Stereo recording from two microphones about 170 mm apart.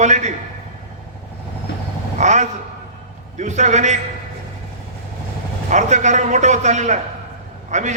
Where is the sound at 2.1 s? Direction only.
45° right (ahead or behind).